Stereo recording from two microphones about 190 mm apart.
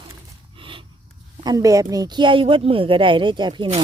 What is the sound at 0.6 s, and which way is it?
Snort, 25° right (ahead or behind).